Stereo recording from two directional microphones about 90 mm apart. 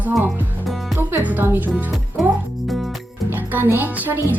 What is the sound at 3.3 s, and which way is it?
Speech, 20° right (ahead or behind).